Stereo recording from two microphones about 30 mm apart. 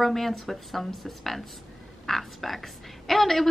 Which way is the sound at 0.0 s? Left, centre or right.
Centre.